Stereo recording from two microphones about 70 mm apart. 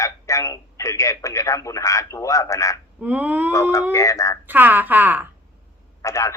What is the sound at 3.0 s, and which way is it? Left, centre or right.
Speech, right.